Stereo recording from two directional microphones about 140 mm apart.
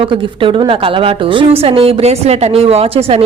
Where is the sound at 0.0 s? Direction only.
40° right (ahead or behind).